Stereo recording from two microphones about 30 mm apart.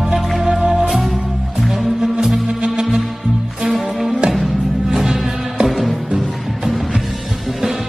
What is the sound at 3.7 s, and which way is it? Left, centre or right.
Music, centre.